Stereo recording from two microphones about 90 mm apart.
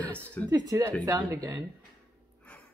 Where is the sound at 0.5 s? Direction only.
45° right (ahead or behind).